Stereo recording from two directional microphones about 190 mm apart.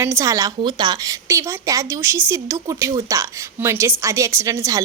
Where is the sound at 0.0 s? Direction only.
15° right (ahead or behind).